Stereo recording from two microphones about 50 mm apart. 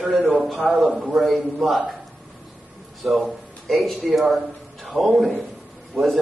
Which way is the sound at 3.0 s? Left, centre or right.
Centre.